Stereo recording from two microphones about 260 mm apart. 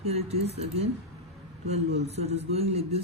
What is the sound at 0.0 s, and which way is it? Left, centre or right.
A man's voice, right.